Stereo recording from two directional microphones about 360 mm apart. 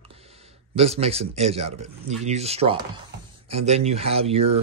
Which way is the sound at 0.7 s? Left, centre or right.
Centre.